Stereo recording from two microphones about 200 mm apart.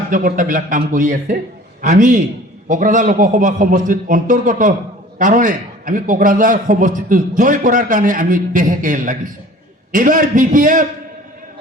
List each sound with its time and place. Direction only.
0.1 s a man's voice: 40° right (ahead or behind)